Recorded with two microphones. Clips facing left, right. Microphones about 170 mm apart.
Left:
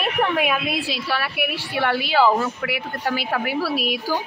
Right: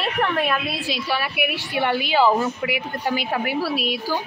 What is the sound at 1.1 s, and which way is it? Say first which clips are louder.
Speech: right 2 dB; centre (ahead or behind).